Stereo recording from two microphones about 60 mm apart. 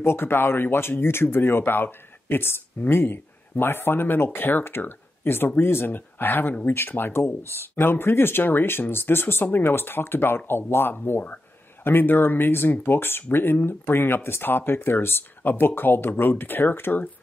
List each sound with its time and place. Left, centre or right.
0.0 s speech: left